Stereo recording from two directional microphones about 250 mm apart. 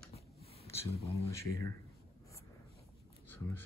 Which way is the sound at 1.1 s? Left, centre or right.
Centre.